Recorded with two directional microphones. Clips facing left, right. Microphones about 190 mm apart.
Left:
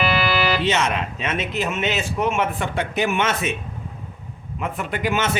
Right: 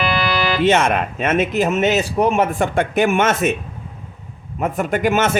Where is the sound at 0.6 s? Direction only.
50° right (ahead or behind).